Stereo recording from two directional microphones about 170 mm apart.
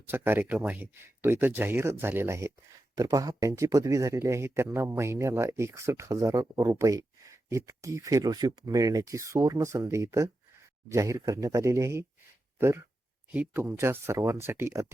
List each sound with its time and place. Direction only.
0.1 s a man's voice: 10° right (ahead or behind)